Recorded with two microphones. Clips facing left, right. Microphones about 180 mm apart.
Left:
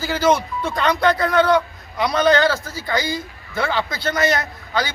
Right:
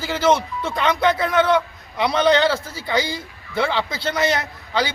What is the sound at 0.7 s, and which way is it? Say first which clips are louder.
A man's voice: left 1 dB; 20° right (ahead or behind).